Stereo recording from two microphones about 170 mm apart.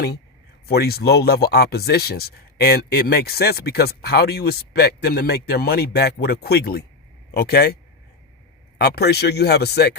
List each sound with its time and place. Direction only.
0.7 s speech: 70° left (ahead or behind)
8.8 s speech: 70° left (ahead or behind)